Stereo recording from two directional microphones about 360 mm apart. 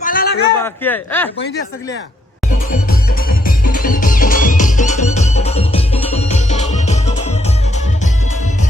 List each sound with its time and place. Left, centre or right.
0.0 s a sound: left
0.6 s a man's voice: centre
2.6 s music: left